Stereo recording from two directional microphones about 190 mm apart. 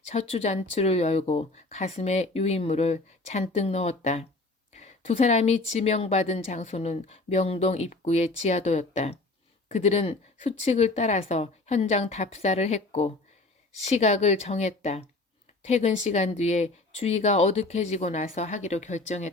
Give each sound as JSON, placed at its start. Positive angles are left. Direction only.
{"t": 0.0, "sound": "speech", "side_deg": 35}